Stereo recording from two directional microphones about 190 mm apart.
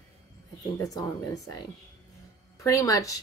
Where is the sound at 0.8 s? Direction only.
20° left (ahead or behind).